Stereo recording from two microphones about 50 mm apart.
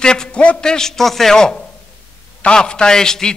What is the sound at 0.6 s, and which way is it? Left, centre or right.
A man's voice, centre.